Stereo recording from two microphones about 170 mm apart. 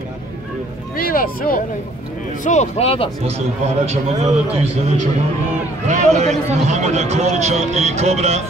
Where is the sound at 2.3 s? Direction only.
45° left (ahead or behind).